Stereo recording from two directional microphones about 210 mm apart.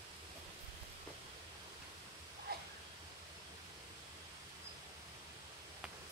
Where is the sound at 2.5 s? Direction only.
50° right (ahead or behind).